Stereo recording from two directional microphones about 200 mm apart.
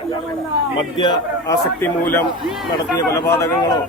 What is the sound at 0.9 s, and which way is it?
Speech, 20° left (ahead or behind).